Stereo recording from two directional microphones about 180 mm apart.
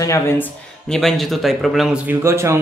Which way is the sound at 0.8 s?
Centre (ahead or behind).